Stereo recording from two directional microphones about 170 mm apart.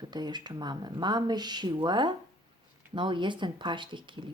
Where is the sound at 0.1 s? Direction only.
25° right (ahead or behind).